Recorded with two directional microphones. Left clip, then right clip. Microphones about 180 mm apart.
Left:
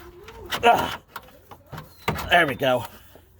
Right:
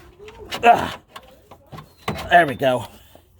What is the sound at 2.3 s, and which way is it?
Speech, 40° right (ahead or behind).